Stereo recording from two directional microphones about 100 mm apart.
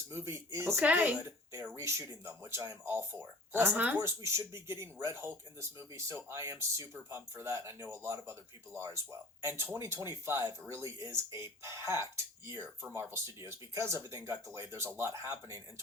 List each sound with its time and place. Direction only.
0.1 s speech: 25° right (ahead or behind)
0.8 s speech: 15° right (ahead or behind)
1.7 s speech: 30° right (ahead or behind)
4.0 s speech: 30° right (ahead or behind)